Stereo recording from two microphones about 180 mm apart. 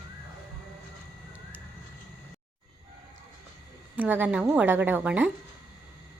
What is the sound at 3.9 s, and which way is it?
A woman's voice, 10° right (ahead or behind).